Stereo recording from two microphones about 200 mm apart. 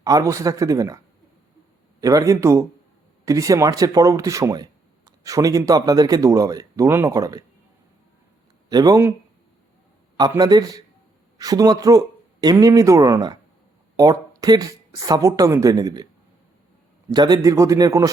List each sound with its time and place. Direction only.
0.0 s speech: 15° right (ahead or behind)
2.0 s speech: 15° right (ahead or behind)
8.7 s speech: 20° right (ahead or behind)
10.2 s speech: 20° right (ahead or behind)
17.1 s speech: 20° right (ahead or behind)